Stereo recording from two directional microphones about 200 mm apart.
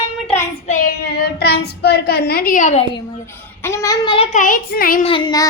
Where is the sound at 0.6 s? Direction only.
40° left (ahead or behind).